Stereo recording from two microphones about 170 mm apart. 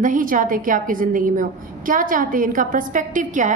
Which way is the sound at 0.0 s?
50° right (ahead or behind).